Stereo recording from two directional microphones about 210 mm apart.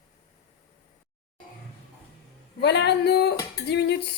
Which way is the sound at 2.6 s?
55° left (ahead or behind).